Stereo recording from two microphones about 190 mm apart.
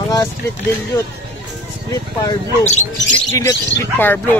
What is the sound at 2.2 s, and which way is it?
Speech, 20° left (ahead or behind).